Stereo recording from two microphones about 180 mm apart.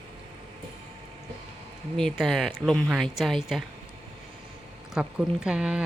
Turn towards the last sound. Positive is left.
turn(degrees=-5)  # may be behind; listen again after turning